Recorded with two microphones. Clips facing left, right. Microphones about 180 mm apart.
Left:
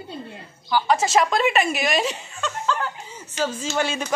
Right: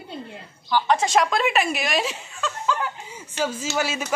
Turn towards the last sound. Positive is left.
turn(degrees=-5)  # may be behind; listen again after turning